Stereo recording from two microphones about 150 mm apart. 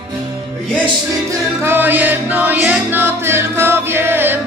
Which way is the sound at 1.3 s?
15° right (ahead or behind).